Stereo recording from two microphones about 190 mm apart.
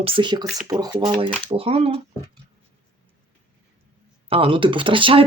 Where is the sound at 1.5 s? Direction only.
30° right (ahead or behind).